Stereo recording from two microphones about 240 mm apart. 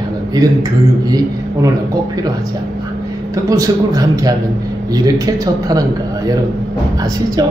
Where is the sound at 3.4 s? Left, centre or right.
Centre.